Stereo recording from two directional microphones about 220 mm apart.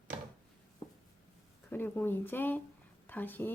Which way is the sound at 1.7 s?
10° left (ahead or behind).